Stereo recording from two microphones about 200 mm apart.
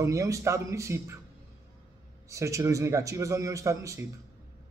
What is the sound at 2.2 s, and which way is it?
A man's voice, 15° right (ahead or behind).